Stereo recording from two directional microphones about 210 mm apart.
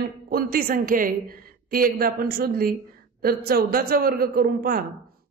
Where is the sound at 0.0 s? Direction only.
45° right (ahead or behind).